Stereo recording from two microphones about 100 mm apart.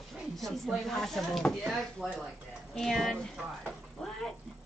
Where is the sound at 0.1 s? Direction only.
Centre (ahead or behind).